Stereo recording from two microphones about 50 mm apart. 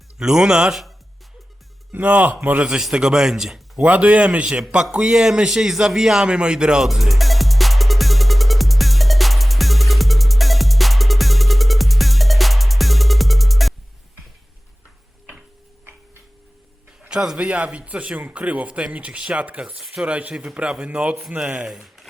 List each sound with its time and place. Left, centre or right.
0.2 s a man's voice: centre
1.9 s speech: right
2.9 s a man's voice: centre
3.8 s a man's voice: right
6.8 s music: centre
17.0 s a sound: centre
17.3 s a man's voice: right
20.3 s a man's voice: centre